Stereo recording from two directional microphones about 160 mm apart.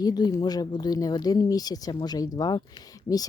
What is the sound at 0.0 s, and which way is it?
Speech, 25° left (ahead or behind).